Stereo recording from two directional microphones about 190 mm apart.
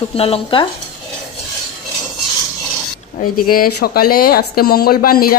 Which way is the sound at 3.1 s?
50° left (ahead or behind).